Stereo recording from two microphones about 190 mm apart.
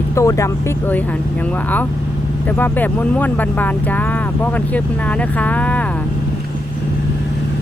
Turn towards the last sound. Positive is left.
turn(degrees=5)  # may be behind; listen again after turning